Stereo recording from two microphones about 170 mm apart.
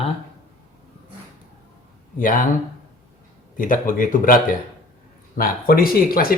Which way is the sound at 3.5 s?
50° left (ahead or behind).